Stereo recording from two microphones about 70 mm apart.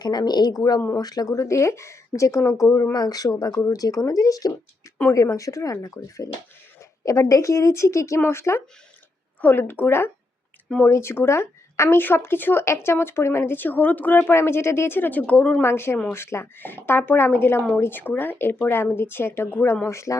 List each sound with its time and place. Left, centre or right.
0.0 s a woman's voice: left
0.9 s speech: left
1.3 s a woman's voice: left
2.9 s a woman's voice: left
9.4 s a woman's voice: left
15.6 s speech: left